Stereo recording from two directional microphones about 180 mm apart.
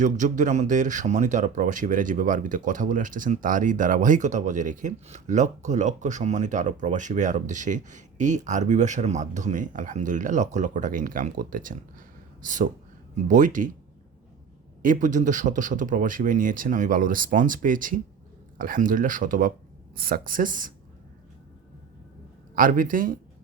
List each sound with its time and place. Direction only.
0.0 s speech: 45° right (ahead or behind)
14.8 s speech: 45° right (ahead or behind)
22.5 s speech: 50° right (ahead or behind)